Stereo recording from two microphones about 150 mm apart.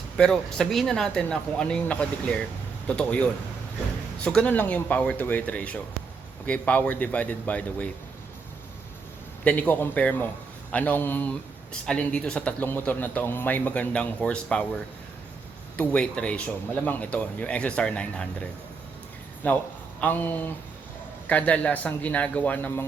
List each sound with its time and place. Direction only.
0.2 s a man's voice: 5° left (ahead or behind)
9.4 s a man's voice: 10° left (ahead or behind)
15.8 s a man's voice: 10° left (ahead or behind)
19.4 s a man's voice: 10° left (ahead or behind)